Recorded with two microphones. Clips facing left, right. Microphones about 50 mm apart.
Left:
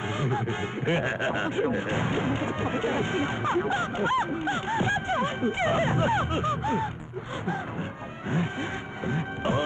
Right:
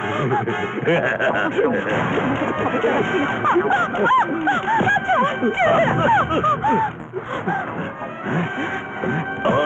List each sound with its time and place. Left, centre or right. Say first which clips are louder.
0.2 s speech: right 8 dB; right
9.0 s music: right 8 dB; right